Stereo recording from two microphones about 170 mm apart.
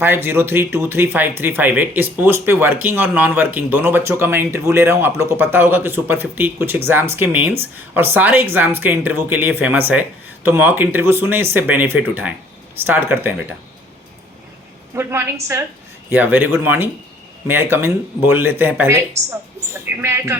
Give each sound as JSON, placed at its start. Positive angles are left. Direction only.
{"t": 0.0, "sound": "speech", "side_deg": -15}
{"t": 14.9, "sound": "speech", "side_deg": -15}